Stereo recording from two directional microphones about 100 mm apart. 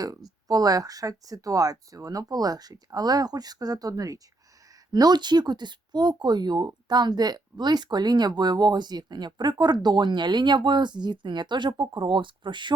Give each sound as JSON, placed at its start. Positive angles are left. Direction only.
{"t": 0.0, "sound": "speech", "side_deg": -40}